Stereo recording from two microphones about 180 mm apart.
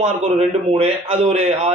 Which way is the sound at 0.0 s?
35° right (ahead or behind).